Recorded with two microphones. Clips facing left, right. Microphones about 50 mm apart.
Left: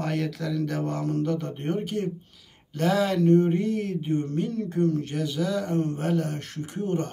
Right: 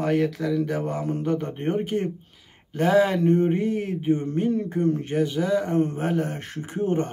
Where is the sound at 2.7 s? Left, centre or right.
Centre.